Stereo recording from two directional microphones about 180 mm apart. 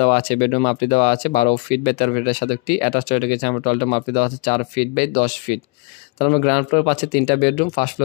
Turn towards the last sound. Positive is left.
turn(degrees=50)  # may be behind; listen again after turning